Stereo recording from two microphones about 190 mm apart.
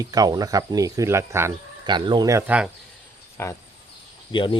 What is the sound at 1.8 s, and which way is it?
Speech, 25° right (ahead or behind).